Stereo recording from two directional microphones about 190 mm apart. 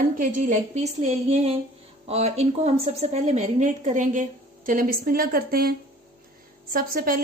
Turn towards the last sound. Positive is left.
turn(degrees=-50)  # may be behind; listen again after turning